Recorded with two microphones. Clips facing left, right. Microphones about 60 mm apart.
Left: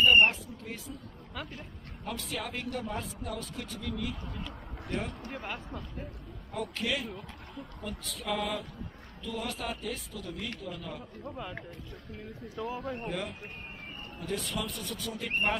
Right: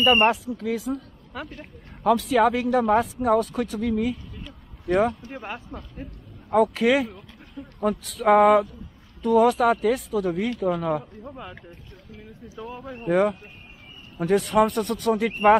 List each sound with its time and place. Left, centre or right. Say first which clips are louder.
0.0 s speech: right 4 dB; right
0.7 s speech: right 17 dB; right
1.3 s speech: right 6 dB; centre
2.0 s speech: right 18 dB; right
5.3 s speech: right 4 dB; centre
6.5 s speech: right 15 dB; right
7.8 s speech: right 17 dB; right
11.2 s speech: right 2 dB; centre
12.5 s speech: even; centre
13.0 s speech: right 15 dB; right